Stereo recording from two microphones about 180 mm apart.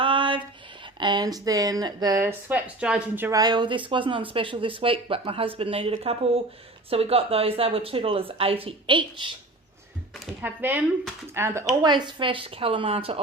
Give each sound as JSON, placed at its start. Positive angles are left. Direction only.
{"t": 0.0, "sound": "a sound", "side_deg": -30}
{"t": 0.9, "sound": "speech", "side_deg": -25}
{"t": 10.4, "sound": "speech", "side_deg": -10}